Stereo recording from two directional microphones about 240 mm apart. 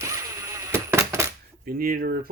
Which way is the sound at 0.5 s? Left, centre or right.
Centre.